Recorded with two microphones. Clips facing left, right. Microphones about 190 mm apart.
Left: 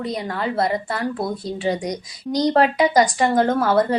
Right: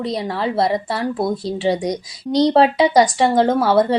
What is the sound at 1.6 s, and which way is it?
A woman's voice, 30° right (ahead or behind).